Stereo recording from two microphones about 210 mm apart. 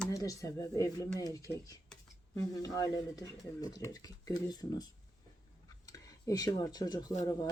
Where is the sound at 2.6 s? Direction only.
15° left (ahead or behind).